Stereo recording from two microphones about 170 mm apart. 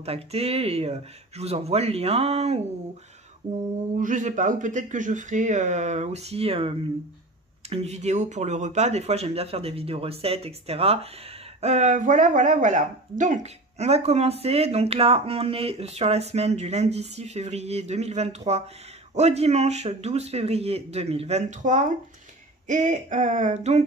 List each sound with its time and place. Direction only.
0.0 s speech: 35° right (ahead or behind)
3.9 s speech: 50° right (ahead or behind)
7.7 s speech: 40° right (ahead or behind)